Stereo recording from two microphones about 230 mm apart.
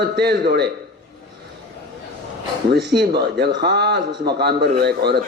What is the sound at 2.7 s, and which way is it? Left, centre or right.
Speech, right.